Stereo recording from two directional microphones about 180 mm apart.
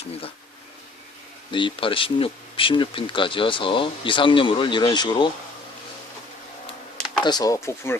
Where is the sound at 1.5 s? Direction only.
30° left (ahead or behind).